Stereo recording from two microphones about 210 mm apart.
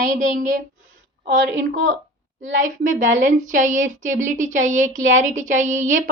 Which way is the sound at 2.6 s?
40° right (ahead or behind).